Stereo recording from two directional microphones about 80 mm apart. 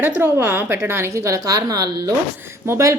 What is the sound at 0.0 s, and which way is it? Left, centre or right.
A woman's voice, right.